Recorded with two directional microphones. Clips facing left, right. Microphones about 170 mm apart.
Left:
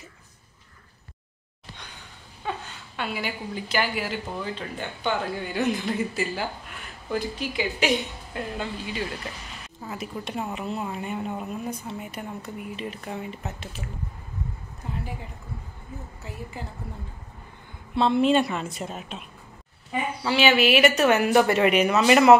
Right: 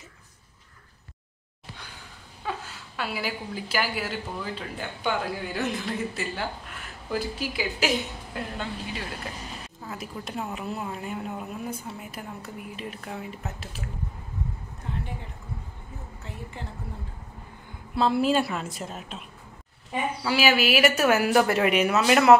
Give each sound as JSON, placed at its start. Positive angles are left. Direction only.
{"t": 2.4, "sound": "a woman's voice", "side_deg": -5}
{"t": 9.8, "sound": "a woman's voice", "side_deg": 0}
{"t": 14.8, "sound": "a sound", "side_deg": 5}
{"t": 16.6, "sound": "a woman's voice", "side_deg": 5}
{"t": 17.9, "sound": "a woman's voice", "side_deg": -5}
{"t": 20.2, "sound": "a woman's voice", "side_deg": -5}